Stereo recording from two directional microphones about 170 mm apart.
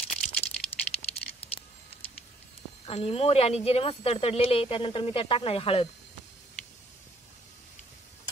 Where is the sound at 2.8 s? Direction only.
35° left (ahead or behind).